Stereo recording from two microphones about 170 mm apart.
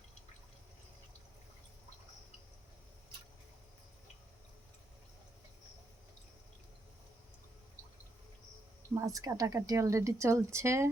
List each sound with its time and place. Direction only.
9.0 s a woman's voice: 20° right (ahead or behind)